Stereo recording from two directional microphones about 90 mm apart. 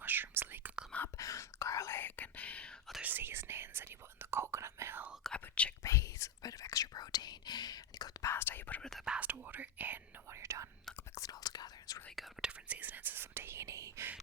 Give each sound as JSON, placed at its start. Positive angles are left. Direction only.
{"t": 0.0, "sound": "whispering", "side_deg": -20}
{"t": 1.1, "sound": "whispering", "side_deg": 35}
{"t": 3.0, "sound": "whispering", "side_deg": -20}
{"t": 5.2, "sound": "whispering", "side_deg": 10}
{"t": 5.8, "sound": "whispering", "side_deg": 35}
{"t": 8.2, "sound": "whispering", "side_deg": 25}
{"t": 8.8, "sound": "whispering", "side_deg": 5}
{"t": 9.0, "sound": "whispering", "side_deg": -15}
{"t": 10.2, "sound": "whispering", "side_deg": -30}
{"t": 11.1, "sound": "whispering", "side_deg": 45}
{"t": 12.1, "sound": "whispering", "side_deg": 0}
{"t": 12.5, "sound": "whispering", "side_deg": -15}